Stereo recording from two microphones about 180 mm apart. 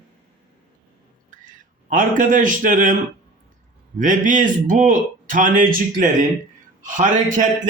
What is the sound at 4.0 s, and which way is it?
Speech, 45° right (ahead or behind).